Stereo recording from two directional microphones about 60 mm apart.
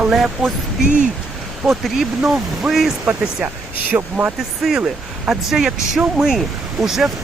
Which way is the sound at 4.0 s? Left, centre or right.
Right.